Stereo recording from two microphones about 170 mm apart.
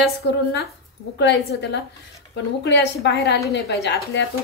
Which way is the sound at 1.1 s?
90° left.